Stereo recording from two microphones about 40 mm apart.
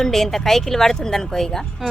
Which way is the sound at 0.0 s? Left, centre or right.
Centre.